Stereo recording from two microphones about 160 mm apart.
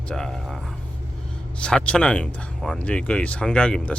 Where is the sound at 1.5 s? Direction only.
5° left (ahead or behind).